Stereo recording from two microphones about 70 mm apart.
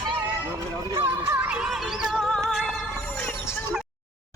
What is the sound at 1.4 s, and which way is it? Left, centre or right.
Music, centre.